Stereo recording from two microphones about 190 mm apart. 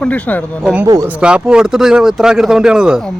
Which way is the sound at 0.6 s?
10° right (ahead or behind).